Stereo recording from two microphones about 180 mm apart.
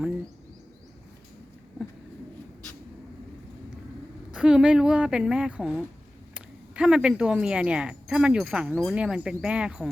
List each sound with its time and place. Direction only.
4.4 s speech: 5° right (ahead or behind)